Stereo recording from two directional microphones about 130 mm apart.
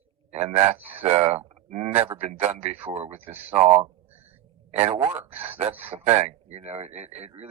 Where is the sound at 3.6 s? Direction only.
60° right (ahead or behind).